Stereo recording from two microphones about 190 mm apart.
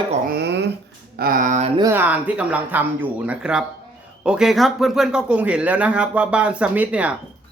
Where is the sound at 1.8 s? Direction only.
10° right (ahead or behind).